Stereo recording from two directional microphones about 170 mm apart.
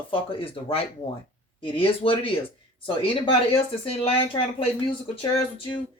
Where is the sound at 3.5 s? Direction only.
35° left (ahead or behind).